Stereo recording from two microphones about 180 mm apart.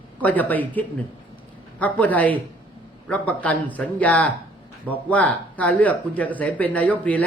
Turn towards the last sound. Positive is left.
turn(degrees=10)  # may be behind; listen again after turning